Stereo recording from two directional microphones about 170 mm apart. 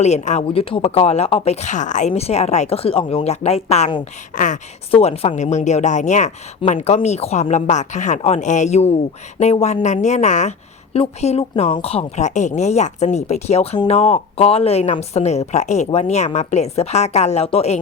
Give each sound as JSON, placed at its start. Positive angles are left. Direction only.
{"t": 0.0, "sound": "a woman's voice", "side_deg": 40}